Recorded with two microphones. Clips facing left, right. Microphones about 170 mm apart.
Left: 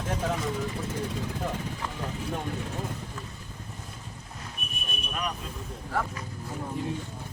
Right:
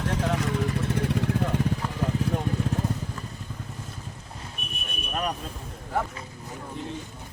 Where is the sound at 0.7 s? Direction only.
70° right (ahead or behind).